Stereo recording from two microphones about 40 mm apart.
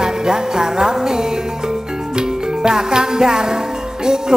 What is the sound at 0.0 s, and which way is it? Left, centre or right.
Music, centre.